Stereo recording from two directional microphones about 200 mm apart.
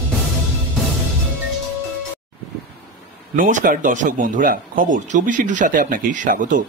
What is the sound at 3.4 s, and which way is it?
Speech, 40° right (ahead or behind).